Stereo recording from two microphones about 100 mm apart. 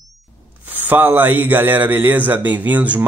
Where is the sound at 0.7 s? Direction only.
20° right (ahead or behind).